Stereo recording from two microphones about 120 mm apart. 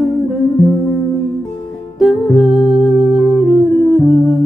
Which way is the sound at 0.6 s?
Centre (ahead or behind).